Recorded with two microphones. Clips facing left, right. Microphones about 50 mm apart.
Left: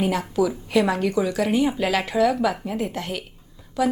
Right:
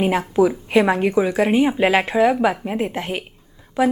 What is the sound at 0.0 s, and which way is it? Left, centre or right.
A woman's voice, right.